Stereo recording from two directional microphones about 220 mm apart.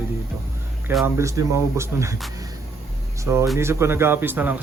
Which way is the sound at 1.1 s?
15° right (ahead or behind).